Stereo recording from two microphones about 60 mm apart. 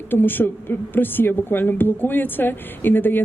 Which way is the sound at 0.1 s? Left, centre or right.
Left.